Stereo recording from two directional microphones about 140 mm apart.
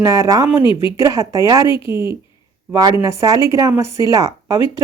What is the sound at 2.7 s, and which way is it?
Speech, 20° right (ahead or behind).